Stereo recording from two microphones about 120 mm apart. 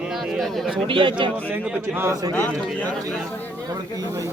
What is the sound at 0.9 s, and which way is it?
Speech, 45° right (ahead or behind).